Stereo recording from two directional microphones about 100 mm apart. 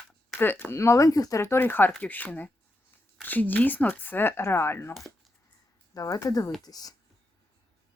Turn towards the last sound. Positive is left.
turn(degrees=40)  # may be behind; listen again after turning